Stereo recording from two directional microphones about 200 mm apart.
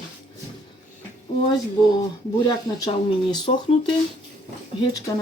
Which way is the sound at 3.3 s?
20° left (ahead or behind).